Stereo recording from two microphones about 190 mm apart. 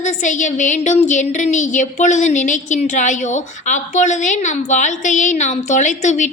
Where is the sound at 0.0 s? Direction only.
40° left (ahead or behind).